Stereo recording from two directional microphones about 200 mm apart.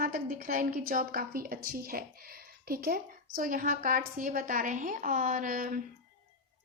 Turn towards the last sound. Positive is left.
turn(degrees=-40)  # may be behind; listen again after turning